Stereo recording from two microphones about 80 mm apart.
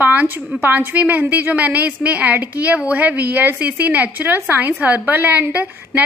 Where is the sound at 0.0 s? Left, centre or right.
Right.